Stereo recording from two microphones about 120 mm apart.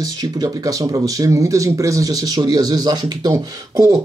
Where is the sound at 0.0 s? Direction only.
30° right (ahead or behind).